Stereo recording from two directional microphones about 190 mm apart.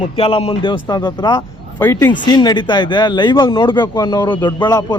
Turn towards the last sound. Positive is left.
turn(degrees=20)  # may be behind; listen again after turning